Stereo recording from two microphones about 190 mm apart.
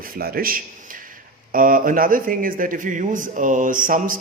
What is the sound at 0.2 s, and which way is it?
A man's voice, 50° right (ahead or behind).